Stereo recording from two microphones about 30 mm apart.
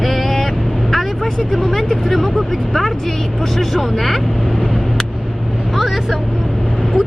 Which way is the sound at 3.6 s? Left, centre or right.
Centre.